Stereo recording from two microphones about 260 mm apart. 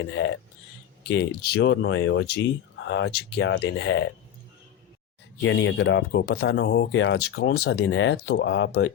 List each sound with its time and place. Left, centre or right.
0.2 s speech: left
5.4 s speech: left